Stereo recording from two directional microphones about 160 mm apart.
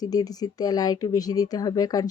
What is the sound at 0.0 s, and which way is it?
Speech, 25° left (ahead or behind).